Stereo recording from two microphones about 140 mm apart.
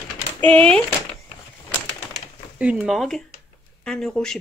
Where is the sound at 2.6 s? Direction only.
10° right (ahead or behind).